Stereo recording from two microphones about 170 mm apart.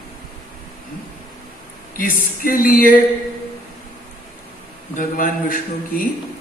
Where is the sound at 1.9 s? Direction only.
55° left (ahead or behind).